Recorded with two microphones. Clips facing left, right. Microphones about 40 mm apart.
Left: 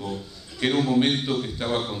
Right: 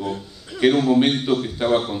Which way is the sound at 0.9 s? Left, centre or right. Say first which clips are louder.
Right 4 dB; centre.